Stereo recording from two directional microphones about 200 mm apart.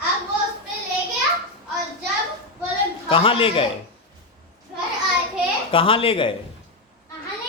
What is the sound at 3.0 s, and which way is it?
Speech, 25° left (ahead or behind).